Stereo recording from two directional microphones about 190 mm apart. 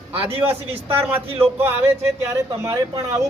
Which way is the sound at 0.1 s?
30° right (ahead or behind).